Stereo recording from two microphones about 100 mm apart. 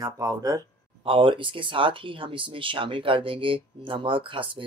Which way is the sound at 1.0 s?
60° right (ahead or behind).